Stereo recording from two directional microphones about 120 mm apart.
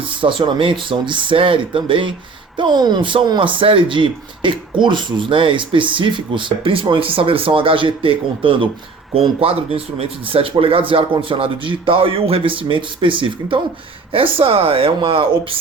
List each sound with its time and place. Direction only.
0.2 s speech: 45° right (ahead or behind)